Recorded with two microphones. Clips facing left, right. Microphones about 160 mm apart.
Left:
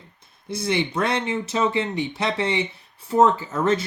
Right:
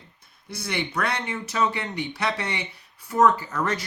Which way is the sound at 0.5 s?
25° left (ahead or behind).